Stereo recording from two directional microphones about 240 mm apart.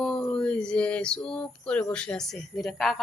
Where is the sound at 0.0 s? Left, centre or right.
Centre.